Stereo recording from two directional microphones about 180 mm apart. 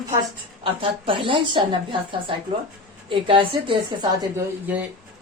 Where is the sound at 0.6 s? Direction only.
30° right (ahead or behind).